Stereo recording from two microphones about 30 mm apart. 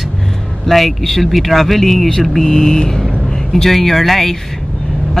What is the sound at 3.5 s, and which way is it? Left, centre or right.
Speech, centre.